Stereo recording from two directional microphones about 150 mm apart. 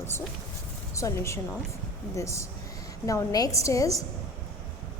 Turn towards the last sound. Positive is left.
turn(degrees=20)  # may be behind; listen again after turning